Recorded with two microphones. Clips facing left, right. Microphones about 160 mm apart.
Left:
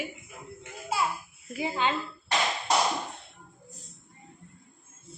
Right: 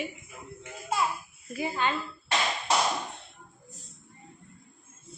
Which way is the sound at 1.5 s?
15° left (ahead or behind).